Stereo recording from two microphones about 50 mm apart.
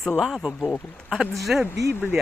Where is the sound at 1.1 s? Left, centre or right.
Centre.